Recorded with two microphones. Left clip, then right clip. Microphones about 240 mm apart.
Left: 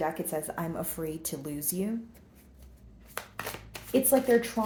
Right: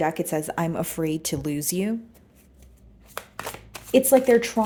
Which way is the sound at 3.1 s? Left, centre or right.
Right.